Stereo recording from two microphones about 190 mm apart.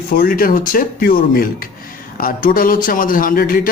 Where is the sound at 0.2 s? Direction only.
50° left (ahead or behind).